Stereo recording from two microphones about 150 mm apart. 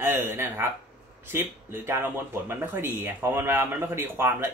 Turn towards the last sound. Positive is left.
turn(degrees=-15)  # may be behind; listen again after turning